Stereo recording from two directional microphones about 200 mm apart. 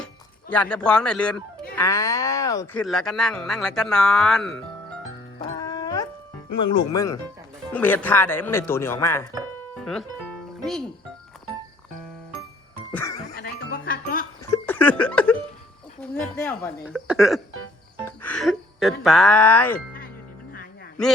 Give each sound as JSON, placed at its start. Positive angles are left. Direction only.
{"t": 0.5, "sound": "speech", "side_deg": 5}
{"t": 2.8, "sound": "speech", "side_deg": 0}
{"t": 5.5, "sound": "music", "side_deg": 20}
{"t": 6.9, "sound": "speech", "side_deg": 15}
{"t": 9.8, "sound": "speech", "side_deg": 5}
{"t": 12.9, "sound": "music", "side_deg": 15}
{"t": 13.3, "sound": "music", "side_deg": 50}
{"t": 14.5, "sound": "a sound", "side_deg": 10}
{"t": 16.0, "sound": "speech", "side_deg": 5}
{"t": 16.8, "sound": "speech", "side_deg": -5}